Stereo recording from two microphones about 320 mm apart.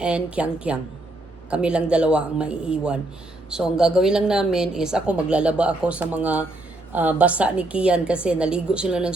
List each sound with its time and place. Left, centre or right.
0.0 s a woman's voice: centre